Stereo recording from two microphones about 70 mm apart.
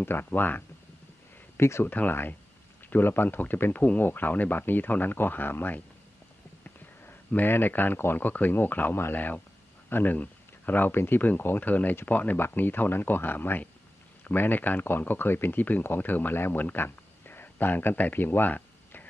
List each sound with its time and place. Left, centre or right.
0.0 s speech: left
1.6 s speech: left
1.9 s speech: left